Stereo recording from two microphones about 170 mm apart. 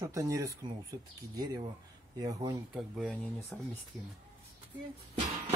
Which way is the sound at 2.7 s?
5° right (ahead or behind).